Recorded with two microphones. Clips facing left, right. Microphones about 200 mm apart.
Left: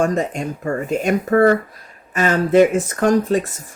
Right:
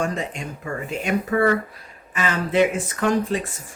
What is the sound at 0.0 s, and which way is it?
Speech, 45° left (ahead or behind).